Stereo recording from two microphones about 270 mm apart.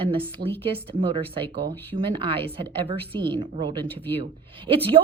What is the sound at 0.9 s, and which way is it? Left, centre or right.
A woman's voice, centre.